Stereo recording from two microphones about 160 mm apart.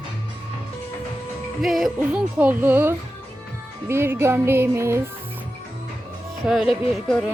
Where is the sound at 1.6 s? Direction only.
Centre (ahead or behind).